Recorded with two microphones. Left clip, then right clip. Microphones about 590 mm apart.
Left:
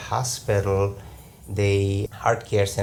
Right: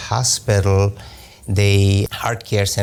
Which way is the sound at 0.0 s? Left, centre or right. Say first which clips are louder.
Right 6 dB; right.